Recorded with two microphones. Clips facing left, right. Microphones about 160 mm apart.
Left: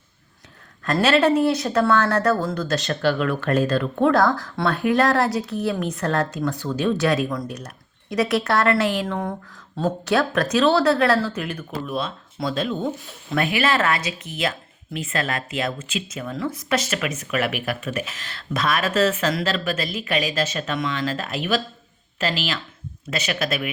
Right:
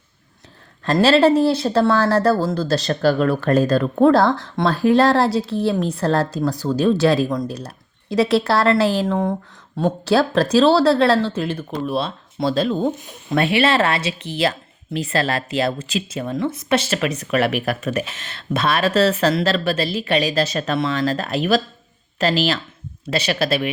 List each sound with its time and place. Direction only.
1.0 s speech: 30° right (ahead or behind)
18.1 s speech: 25° right (ahead or behind)